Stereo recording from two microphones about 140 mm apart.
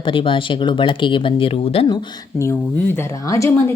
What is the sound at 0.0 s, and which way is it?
Speech, 40° left (ahead or behind).